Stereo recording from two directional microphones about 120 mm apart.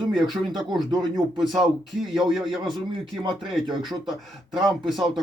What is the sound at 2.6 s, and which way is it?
Speech, 40° right (ahead or behind).